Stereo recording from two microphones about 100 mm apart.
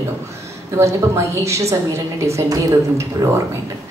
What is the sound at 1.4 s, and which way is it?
A woman's voice, 30° right (ahead or behind).